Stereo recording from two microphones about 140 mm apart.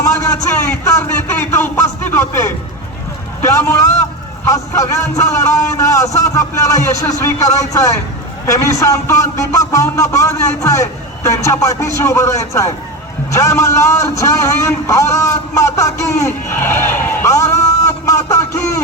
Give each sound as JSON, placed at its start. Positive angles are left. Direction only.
{"t": 0.0, "sound": "a man's voice", "side_deg": 20}